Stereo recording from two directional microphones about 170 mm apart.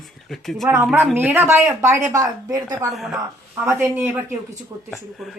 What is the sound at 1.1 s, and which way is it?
A woman's voice, 10° right (ahead or behind).